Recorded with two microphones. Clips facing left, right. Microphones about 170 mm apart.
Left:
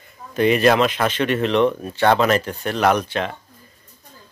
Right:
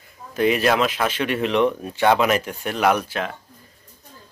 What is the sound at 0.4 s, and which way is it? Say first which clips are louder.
Speech: left 3 dB; centre (ahead or behind).